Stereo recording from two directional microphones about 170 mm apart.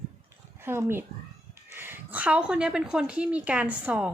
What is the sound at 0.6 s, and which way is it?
A woman's voice, 15° right (ahead or behind).